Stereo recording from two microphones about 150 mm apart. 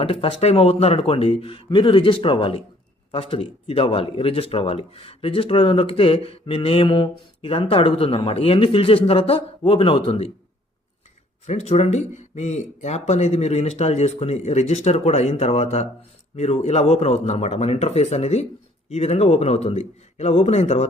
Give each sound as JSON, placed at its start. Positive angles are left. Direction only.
{"t": 0.0, "sound": "speech", "side_deg": 40}
{"t": 11.4, "sound": "speech", "side_deg": 45}